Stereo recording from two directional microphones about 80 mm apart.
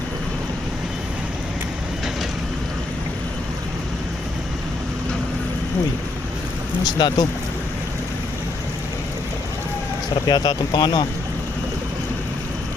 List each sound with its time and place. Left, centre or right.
6.8 s speech: left
10.2 s speech: left